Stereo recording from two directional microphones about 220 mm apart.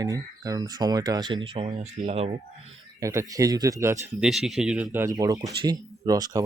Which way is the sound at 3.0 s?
15° right (ahead or behind).